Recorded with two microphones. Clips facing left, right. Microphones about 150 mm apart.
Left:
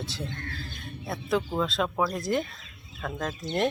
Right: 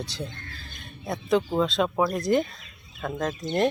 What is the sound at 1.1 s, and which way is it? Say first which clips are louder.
Speech: right 4 dB; 5° left (ahead or behind).